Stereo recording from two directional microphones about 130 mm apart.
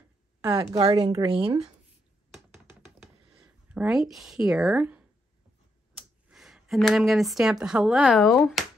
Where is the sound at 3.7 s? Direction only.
5° right (ahead or behind).